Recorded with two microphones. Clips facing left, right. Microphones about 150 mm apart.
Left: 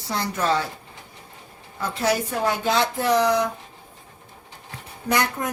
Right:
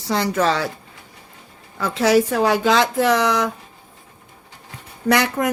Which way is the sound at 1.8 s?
90° right.